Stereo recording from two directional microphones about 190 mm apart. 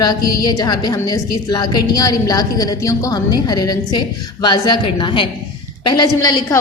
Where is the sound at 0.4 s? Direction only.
20° left (ahead or behind).